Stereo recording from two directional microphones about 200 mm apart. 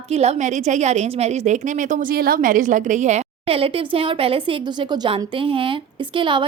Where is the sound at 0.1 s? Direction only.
35° right (ahead or behind).